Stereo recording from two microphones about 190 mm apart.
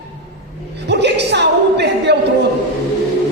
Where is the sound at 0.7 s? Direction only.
65° right (ahead or behind).